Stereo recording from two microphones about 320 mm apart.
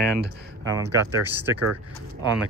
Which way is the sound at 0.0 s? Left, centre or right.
Right.